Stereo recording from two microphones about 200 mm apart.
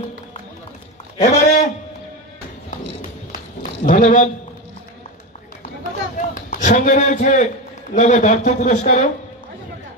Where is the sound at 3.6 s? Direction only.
40° left (ahead or behind).